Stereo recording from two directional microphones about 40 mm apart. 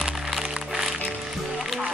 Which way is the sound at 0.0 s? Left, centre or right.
Centre.